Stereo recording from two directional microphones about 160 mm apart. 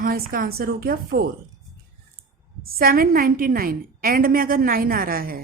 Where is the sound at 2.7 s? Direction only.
65° right (ahead or behind).